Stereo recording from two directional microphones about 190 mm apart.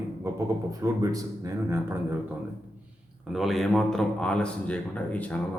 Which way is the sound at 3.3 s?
Centre (ahead or behind).